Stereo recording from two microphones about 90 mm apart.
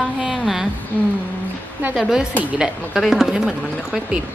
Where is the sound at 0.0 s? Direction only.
5° right (ahead or behind).